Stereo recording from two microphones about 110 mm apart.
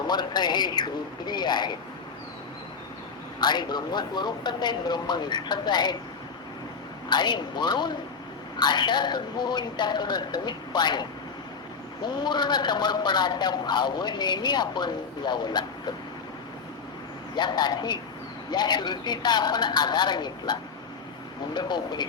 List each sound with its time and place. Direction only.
0.1 s a man's voice: 40° left (ahead or behind)
3.4 s a man's voice: 40° left (ahead or behind)
7.1 s a man's voice: 40° left (ahead or behind)
12.0 s a man's voice: 40° left (ahead or behind)
17.3 s a man's voice: 40° left (ahead or behind)